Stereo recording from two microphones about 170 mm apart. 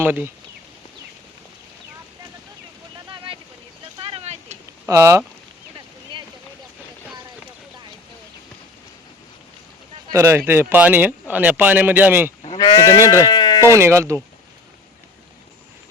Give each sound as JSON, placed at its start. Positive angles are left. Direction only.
{"t": 0.0, "sound": "speech", "side_deg": -10}
{"t": 4.0, "sound": "vehicle", "side_deg": -35}
{"t": 4.9, "sound": "speech", "side_deg": -15}
{"t": 10.1, "sound": "speech", "side_deg": -15}
{"t": 12.5, "sound": "speech", "side_deg": 20}
{"t": 13.3, "sound": "sheep", "side_deg": 25}
{"t": 13.6, "sound": "speech", "side_deg": -15}